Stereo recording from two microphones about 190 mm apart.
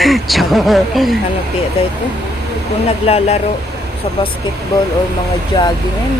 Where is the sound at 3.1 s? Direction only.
35° left (ahead or behind).